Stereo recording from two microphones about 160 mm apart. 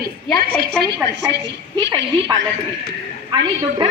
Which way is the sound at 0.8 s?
90° right.